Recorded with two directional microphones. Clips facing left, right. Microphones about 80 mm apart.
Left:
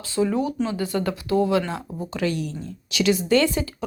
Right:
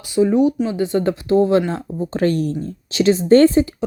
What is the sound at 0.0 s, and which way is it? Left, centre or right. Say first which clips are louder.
Speech: right 8 dB; centre.